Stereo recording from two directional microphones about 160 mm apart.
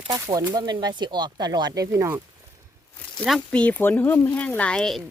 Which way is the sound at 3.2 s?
5° left (ahead or behind).